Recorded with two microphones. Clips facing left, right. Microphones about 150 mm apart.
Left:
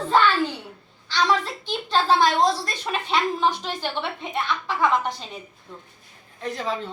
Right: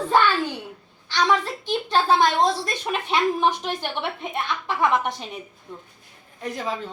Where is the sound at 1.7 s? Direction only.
15° right (ahead or behind).